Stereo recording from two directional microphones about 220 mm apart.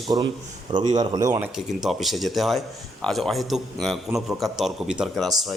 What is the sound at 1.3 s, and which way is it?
A man's voice, 5° right (ahead or behind).